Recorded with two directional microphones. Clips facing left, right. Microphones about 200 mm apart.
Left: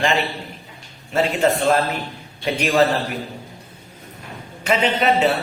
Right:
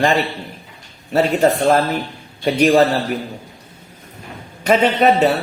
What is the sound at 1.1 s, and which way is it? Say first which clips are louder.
A man's voice: right 4 dB; 40° right (ahead or behind).